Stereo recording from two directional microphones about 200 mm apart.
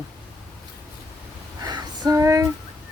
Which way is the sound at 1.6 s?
20° right (ahead or behind).